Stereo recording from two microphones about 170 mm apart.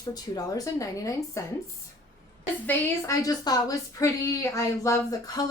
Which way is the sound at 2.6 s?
15° left (ahead or behind).